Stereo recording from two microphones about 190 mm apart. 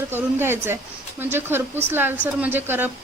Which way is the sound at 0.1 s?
10° right (ahead or behind).